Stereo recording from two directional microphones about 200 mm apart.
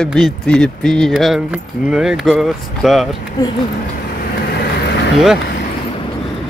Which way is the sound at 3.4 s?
20° left (ahead or behind).